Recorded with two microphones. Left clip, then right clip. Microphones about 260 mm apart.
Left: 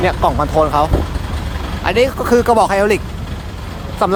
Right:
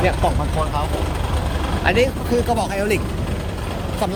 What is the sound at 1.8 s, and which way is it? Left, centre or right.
Speech, centre.